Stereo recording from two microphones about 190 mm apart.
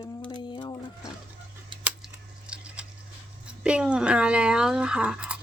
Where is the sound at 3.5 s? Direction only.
5° right (ahead or behind).